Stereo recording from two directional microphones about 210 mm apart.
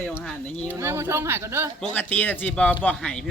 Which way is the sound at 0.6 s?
10° right (ahead or behind).